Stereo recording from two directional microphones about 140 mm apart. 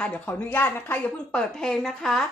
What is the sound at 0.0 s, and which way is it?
A woman's voice, 10° left (ahead or behind).